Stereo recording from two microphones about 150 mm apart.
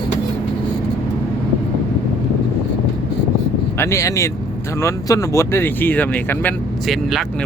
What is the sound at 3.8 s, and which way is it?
Speech, 20° left (ahead or behind).